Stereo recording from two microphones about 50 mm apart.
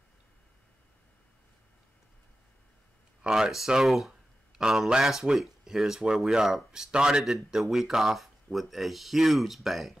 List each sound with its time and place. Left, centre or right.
3.3 s speech: centre
4.6 s speech: centre
7.2 s speech: centre